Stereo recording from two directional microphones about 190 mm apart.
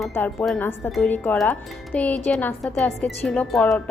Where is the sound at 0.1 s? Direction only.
5° left (ahead or behind).